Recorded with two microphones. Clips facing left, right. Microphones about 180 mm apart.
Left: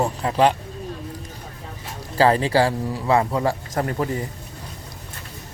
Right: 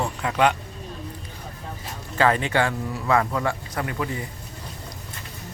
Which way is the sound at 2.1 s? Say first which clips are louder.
Left 4 dB; 30° left (ahead or behind).